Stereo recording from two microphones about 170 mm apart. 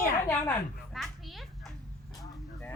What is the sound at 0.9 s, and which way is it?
Children playing, centre (ahead or behind).